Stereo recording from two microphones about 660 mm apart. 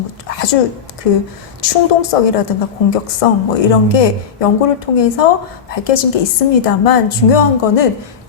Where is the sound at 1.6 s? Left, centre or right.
Left.